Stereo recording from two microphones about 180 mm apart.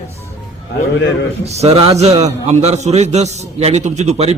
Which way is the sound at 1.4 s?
35° right (ahead or behind).